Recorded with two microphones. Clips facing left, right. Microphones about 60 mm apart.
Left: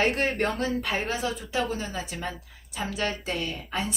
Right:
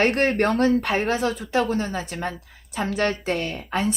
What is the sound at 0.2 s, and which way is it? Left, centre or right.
A woman's voice, right.